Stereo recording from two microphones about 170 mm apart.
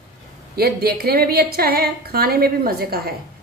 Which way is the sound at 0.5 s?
65° right (ahead or behind).